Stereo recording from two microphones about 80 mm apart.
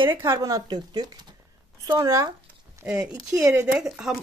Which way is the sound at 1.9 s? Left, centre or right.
Right.